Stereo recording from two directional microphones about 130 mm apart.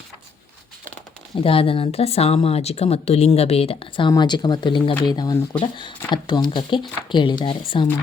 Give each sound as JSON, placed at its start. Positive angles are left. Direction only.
{"t": 1.4, "sound": "speech", "side_deg": 45}